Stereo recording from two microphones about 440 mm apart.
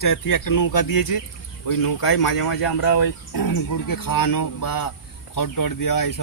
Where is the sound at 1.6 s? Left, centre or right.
Left.